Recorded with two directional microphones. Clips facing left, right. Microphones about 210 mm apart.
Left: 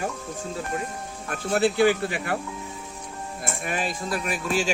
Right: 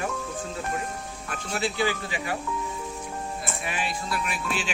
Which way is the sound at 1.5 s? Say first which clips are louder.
Left 7 dB; 55° left (ahead or behind).